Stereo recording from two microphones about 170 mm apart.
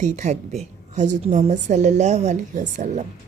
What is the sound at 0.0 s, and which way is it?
A woman's voice, 45° right (ahead or behind).